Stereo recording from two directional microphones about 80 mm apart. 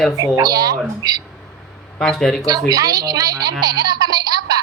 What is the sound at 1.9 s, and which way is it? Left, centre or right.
Speech, centre.